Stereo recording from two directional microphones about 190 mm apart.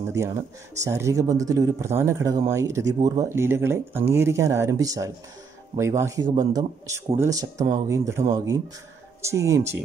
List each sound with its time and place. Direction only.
0.7 s speech: 15° right (ahead or behind)